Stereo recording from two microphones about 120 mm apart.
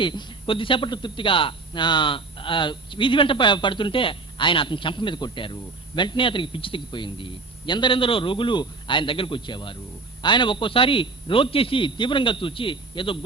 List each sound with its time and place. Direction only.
0.0 s a man's voice: 40° left (ahead or behind)